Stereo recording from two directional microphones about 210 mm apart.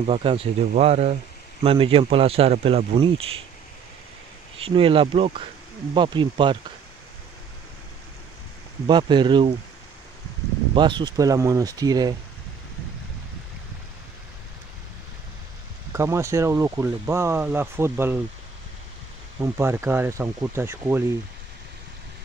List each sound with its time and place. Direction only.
0.0 s speech: 25° right (ahead or behind)
4.6 s speech: 25° right (ahead or behind)
8.8 s speech: 20° right (ahead or behind)
10.7 s speech: 20° right (ahead or behind)
15.9 s speech: 15° right (ahead or behind)
19.4 s speech: 10° right (ahead or behind)